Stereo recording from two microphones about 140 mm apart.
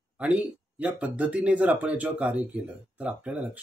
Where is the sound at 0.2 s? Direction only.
10° right (ahead or behind).